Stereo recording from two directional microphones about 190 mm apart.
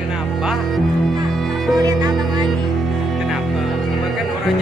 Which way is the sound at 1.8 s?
20° right (ahead or behind).